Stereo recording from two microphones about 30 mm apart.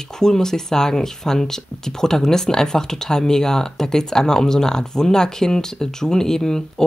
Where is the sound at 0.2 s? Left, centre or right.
Centre.